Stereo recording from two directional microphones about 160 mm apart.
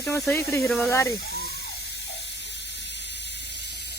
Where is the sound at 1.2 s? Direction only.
80° left.